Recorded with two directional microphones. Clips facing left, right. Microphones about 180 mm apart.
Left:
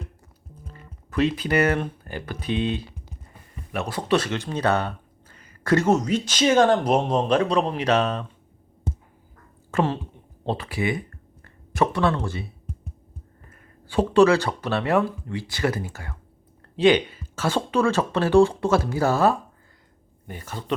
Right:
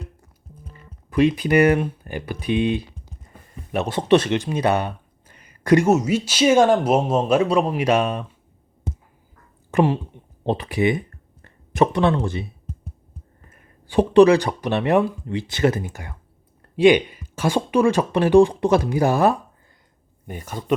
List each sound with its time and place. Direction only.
1.1 s speech: 15° right (ahead or behind)
9.7 s speech: 15° right (ahead or behind)
13.5 s speech: 15° right (ahead or behind)